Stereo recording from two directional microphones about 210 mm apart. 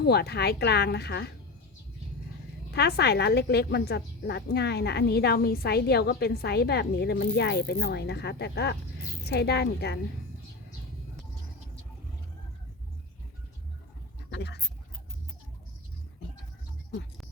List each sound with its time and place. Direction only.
0.0 s a woman's voice: 50° left (ahead or behind)
2.7 s a woman's voice: 50° left (ahead or behind)
14.3 s a sound: 55° left (ahead or behind)